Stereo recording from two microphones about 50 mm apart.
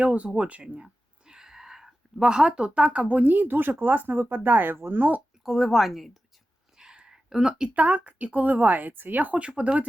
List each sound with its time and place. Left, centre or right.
0.0 s speech: right
5.4 s a woman's voice: centre
6.7 s a sound: centre
7.8 s a woman's voice: right
9.4 s speech: right